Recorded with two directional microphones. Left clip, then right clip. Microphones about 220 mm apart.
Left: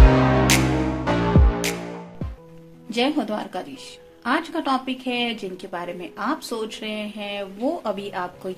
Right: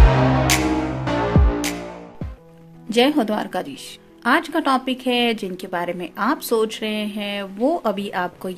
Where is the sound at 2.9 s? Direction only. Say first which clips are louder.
Right 5 dB; 45° right (ahead or behind).